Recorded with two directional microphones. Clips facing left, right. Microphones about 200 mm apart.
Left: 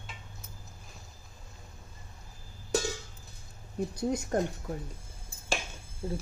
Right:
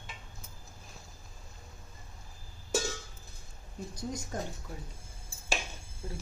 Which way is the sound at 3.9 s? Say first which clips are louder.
Left 7 dB; 65° left (ahead or behind).